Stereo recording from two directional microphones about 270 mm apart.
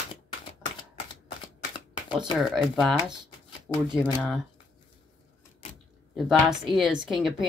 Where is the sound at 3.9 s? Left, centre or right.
Centre.